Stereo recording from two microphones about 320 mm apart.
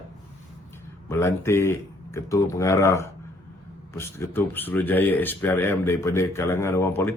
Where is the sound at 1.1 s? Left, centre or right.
Centre.